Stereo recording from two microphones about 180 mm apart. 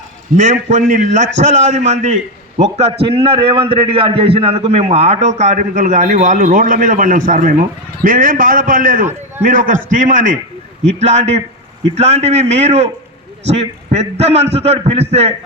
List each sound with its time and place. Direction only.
0.3 s a man's voice: 40° right (ahead or behind)